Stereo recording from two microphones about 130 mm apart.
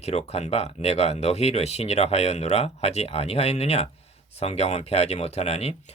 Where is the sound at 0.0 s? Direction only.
55° left (ahead or behind).